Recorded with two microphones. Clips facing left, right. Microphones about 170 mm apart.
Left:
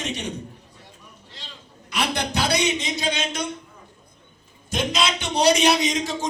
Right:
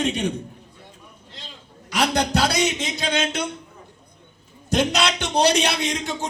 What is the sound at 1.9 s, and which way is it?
A man's voice, 70° right (ahead or behind).